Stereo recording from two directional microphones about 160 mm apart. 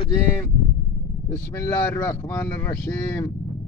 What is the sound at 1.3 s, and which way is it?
Speech, 15° left (ahead or behind).